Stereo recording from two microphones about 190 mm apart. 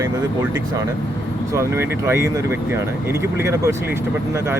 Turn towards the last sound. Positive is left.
turn(degrees=-15)  # may be behind; listen again after turning